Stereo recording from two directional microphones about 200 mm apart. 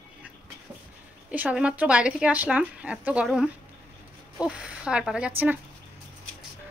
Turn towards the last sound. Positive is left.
turn(degrees=-10)  # may be behind; listen again after turning